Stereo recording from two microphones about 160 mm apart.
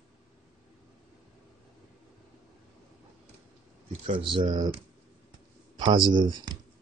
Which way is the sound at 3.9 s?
35° right (ahead or behind).